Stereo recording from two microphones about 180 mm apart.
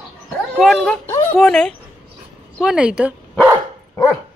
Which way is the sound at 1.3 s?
5° left (ahead or behind).